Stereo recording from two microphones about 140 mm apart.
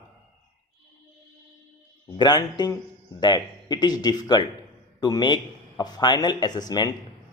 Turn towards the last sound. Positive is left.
turn(degrees=30)  # may be behind; listen again after turning